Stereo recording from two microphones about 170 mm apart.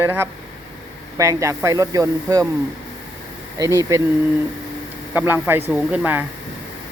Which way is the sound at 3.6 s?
15° right (ahead or behind).